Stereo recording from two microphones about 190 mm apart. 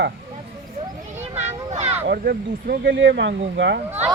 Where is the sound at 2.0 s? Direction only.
55° right (ahead or behind).